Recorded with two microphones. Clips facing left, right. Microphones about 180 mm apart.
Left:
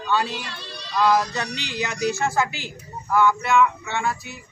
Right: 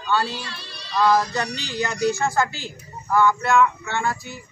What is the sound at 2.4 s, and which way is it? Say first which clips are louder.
Speech: even; 70° left (ahead or behind).